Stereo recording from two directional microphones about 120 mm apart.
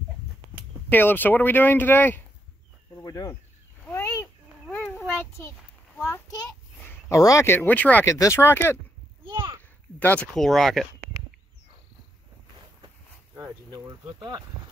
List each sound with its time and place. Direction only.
0.8 s speech: 15° left (ahead or behind)
3.0 s speech: 30° left (ahead or behind)
3.9 s a sound: 20° left (ahead or behind)
6.8 s speech: 20° left (ahead or behind)
8.1 s speech: 25° left (ahead or behind)
9.2 s a sound: 45° right (ahead or behind)
9.9 s speech: 15° left (ahead or behind)
10.3 s speech: centre (ahead or behind)
13.4 s speech: 30° right (ahead or behind)